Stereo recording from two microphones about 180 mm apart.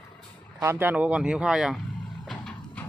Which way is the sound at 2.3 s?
5° left (ahead or behind).